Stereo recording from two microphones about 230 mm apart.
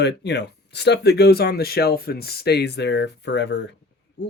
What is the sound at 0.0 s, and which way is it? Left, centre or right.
Speech, left.